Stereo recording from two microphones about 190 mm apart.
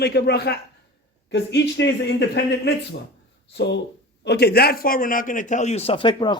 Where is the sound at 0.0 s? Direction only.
55° left (ahead or behind).